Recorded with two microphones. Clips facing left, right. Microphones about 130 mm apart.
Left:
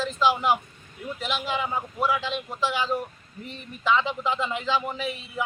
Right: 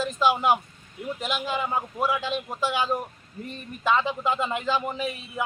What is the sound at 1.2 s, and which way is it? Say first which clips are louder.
A man's voice: even; 45° right (ahead or behind).